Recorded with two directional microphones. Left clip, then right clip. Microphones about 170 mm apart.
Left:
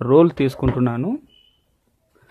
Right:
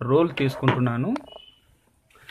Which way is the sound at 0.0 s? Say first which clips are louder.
Left 6 dB; 50° left (ahead or behind).